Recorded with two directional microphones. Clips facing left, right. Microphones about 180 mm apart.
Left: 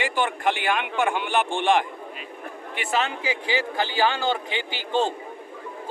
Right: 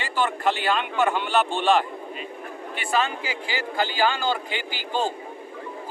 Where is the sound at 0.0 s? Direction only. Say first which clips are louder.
Even; 15° left (ahead or behind).